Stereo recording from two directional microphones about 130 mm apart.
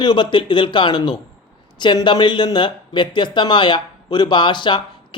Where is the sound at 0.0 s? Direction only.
35° left (ahead or behind).